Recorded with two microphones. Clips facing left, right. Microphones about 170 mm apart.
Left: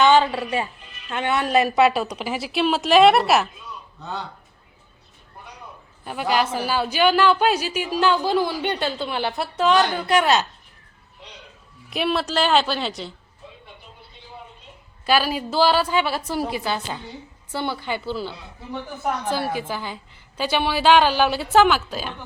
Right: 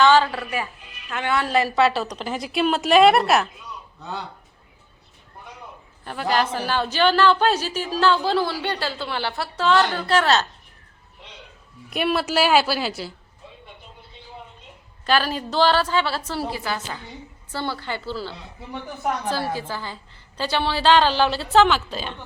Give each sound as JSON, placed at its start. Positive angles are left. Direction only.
{"t": 0.0, "sound": "a woman's voice", "side_deg": 20}
{"t": 6.1, "sound": "a woman's voice", "side_deg": 10}
{"t": 11.9, "sound": "a woman's voice", "side_deg": 0}
{"t": 15.0, "sound": "a woman's voice", "side_deg": 10}